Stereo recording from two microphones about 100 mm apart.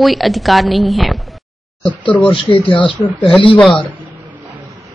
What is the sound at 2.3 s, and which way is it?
Speech, 55° left (ahead or behind).